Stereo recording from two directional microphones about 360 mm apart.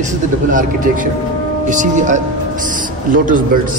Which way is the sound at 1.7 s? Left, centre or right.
Right.